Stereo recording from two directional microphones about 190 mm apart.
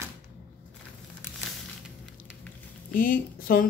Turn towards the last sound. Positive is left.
turn(degrees=50)  # may be behind; listen again after turning